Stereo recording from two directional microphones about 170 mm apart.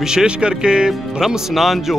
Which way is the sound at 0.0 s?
5° right (ahead or behind).